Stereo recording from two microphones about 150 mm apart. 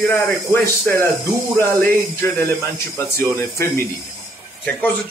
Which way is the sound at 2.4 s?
15° left (ahead or behind).